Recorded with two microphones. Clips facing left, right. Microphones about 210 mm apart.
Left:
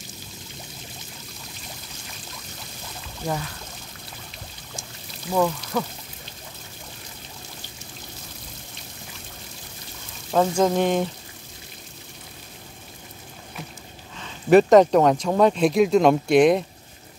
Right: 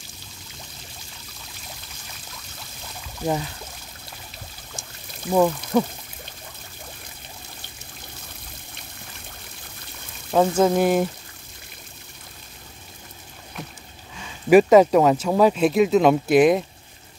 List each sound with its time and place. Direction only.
3.2 s speech: 10° right (ahead or behind)
5.3 s speech: 15° right (ahead or behind)
10.3 s speech: 5° right (ahead or behind)
14.1 s speech: 10° right (ahead or behind)